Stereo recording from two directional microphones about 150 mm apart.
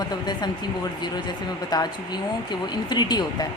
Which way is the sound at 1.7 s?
30° left (ahead or behind).